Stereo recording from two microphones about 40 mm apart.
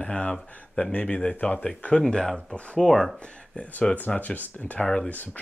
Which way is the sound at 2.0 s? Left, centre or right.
Centre.